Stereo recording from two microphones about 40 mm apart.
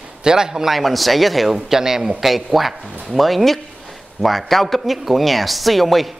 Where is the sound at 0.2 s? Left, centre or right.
Centre.